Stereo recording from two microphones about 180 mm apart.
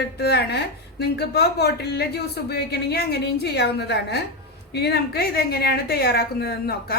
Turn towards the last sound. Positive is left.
turn(degrees=60)  # may be behind; listen again after turning